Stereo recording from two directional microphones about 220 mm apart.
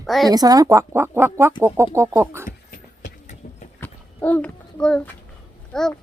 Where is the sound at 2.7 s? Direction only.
35° left (ahead or behind).